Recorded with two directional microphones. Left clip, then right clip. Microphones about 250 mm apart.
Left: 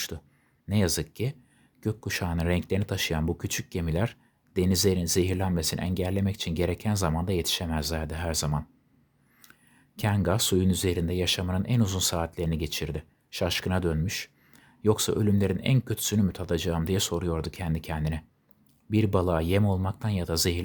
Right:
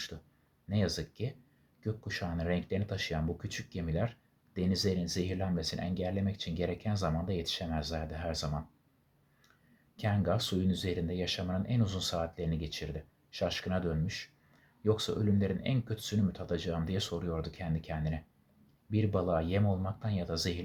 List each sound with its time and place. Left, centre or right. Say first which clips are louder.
0.7 s speech: left 7 dB; left
9.9 s speech: left 5 dB; left